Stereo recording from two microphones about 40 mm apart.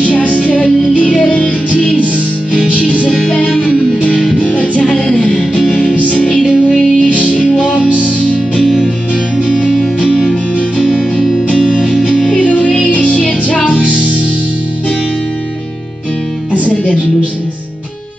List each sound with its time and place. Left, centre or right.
0.0 s music: left
0.7 s music: centre
0.9 s music: left
3.3 s music: left
10.8 s music: centre
12.3 s music: left